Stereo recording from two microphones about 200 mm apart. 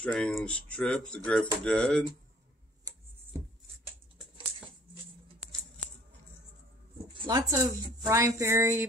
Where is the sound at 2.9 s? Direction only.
20° right (ahead or behind).